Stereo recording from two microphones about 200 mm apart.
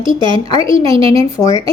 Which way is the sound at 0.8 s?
25° right (ahead or behind).